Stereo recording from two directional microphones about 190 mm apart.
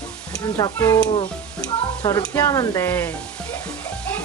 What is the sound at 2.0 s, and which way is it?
Speech, 15° left (ahead or behind).